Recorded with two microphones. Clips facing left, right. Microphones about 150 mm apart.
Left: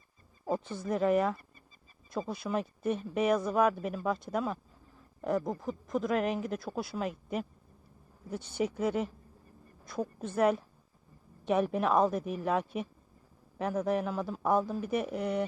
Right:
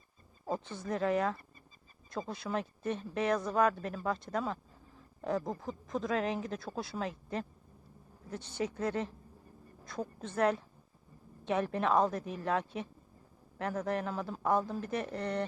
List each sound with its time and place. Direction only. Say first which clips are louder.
0.4 s speech: left 4 dB; 15° left (ahead or behind)